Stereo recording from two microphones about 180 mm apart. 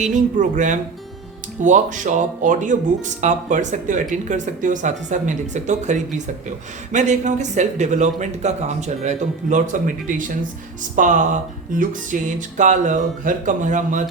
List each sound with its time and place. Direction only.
0.0 s music: 45° right (ahead or behind)
6.9 s a man's voice: 40° right (ahead or behind)
10.9 s music: 45° right (ahead or behind)